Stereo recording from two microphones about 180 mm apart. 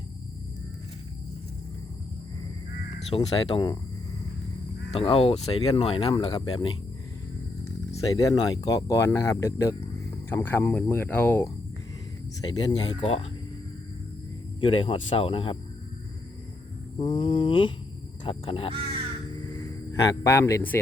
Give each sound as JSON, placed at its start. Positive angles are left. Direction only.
{"t": 3.2, "sound": "mantra", "side_deg": 25}
{"t": 4.9, "sound": "speech", "side_deg": 30}
{"t": 6.1, "sound": "mantra", "side_deg": 25}
{"t": 8.1, "sound": "speech", "side_deg": 20}
{"t": 12.4, "sound": "mantra", "side_deg": 25}
{"t": 13.0, "sound": "speech", "side_deg": 35}
{"t": 14.6, "sound": "speech", "side_deg": 30}
{"t": 17.0, "sound": "mantra", "side_deg": 30}
{"t": 18.3, "sound": "speech", "side_deg": 30}
{"t": 19.5, "sound": "music", "side_deg": 15}